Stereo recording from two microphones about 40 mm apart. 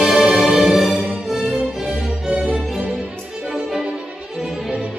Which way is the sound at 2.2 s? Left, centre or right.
Centre.